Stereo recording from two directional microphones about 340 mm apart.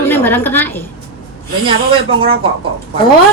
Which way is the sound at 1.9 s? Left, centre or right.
Centre.